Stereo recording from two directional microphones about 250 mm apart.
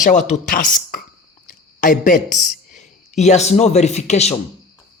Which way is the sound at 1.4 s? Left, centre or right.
Left.